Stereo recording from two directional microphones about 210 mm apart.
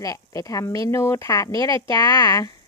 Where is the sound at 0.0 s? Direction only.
15° left (ahead or behind).